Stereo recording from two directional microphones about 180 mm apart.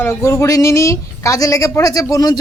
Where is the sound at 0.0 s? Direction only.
15° left (ahead or behind).